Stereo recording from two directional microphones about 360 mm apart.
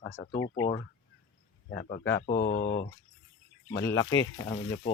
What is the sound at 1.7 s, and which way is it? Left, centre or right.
Speech, left.